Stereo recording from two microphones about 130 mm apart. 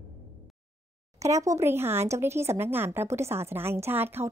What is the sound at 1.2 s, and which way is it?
Speech, 25° right (ahead or behind).